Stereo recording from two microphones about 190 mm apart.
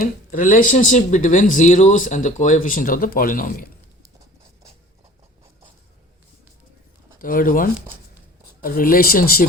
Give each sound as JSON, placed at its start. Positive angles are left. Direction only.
{"t": 0.0, "sound": "speech", "side_deg": 45}
{"t": 7.2, "sound": "speech", "side_deg": 45}